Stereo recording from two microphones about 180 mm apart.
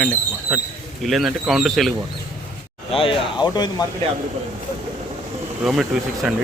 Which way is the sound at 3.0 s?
30° left (ahead or behind).